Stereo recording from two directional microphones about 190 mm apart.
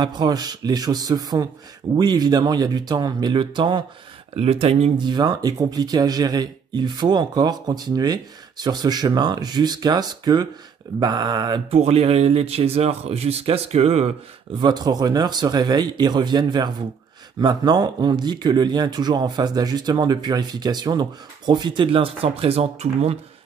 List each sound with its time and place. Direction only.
0.0 s speech: 20° right (ahead or behind)
14.6 s speech: 20° right (ahead or behind)